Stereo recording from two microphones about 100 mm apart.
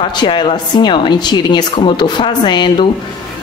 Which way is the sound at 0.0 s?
50° left (ahead or behind).